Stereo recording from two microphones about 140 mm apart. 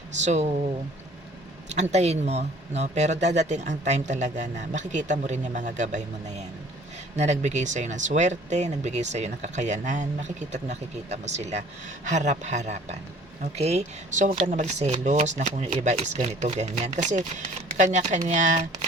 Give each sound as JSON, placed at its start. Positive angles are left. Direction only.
{"t": 0.3, "sound": "speech", "side_deg": -55}
{"t": 1.7, "sound": "speech", "side_deg": -50}